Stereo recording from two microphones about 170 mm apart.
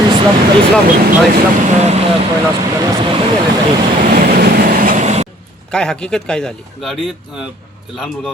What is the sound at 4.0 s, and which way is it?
Train, 55° right (ahead or behind).